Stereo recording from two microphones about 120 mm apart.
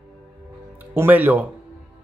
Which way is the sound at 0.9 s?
15° right (ahead or behind).